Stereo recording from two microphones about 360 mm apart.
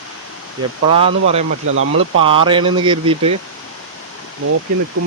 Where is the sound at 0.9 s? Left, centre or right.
Centre.